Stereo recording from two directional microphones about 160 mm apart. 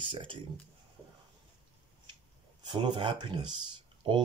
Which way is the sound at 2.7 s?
30° right (ahead or behind).